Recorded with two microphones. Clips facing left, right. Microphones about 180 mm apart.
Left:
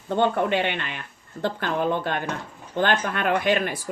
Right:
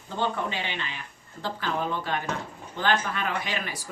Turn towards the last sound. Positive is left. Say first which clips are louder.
# left 9 dB
turn(degrees=55)  # may be behind; listen again after turning